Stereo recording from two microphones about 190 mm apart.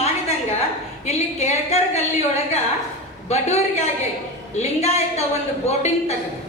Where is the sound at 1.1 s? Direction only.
35° left (ahead or behind).